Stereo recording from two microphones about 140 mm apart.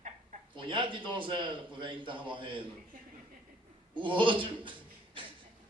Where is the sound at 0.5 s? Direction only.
35° right (ahead or behind).